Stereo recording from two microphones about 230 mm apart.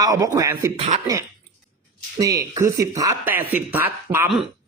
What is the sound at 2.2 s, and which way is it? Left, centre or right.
Speech, centre.